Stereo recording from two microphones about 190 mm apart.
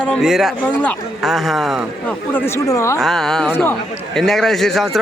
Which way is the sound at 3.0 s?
Centre (ahead or behind).